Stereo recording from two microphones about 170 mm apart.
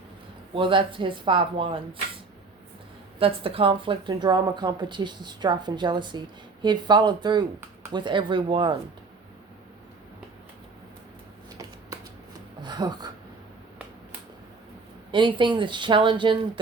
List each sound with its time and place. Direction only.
0.5 s speech: 30° right (ahead or behind)
3.2 s a woman's voice: 35° right (ahead or behind)
12.6 s a sound: 25° right (ahead or behind)
15.1 s speech: 30° right (ahead or behind)